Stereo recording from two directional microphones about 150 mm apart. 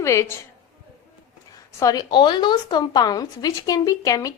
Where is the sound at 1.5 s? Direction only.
25° left (ahead or behind).